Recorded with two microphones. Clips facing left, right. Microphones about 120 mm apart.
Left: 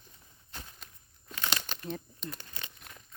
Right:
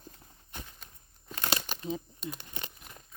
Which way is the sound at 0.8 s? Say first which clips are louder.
Even; centre (ahead or behind).